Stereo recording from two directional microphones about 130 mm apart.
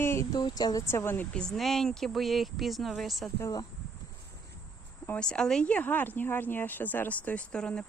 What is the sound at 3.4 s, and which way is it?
Speech, 30° left (ahead or behind).